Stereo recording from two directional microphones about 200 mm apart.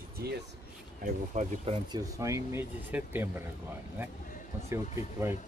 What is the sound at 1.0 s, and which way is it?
Speech, 35° right (ahead or behind).